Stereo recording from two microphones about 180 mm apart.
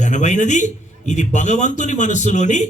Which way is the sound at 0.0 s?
40° left (ahead or behind).